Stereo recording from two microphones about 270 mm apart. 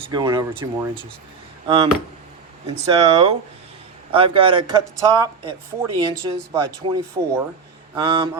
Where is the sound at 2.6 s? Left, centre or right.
Centre.